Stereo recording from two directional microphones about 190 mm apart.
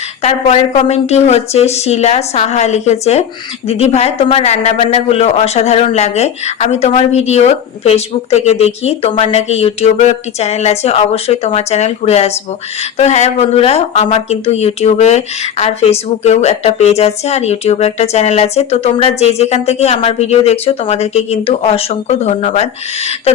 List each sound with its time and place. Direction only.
0.2 s speech: 35° left (ahead or behind)